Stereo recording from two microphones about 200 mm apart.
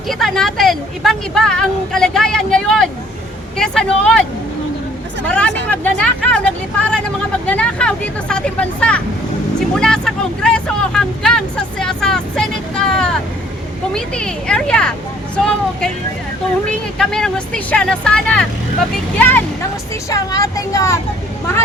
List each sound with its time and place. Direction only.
0.1 s speech: centre (ahead or behind)
5.3 s speech: 5° left (ahead or behind)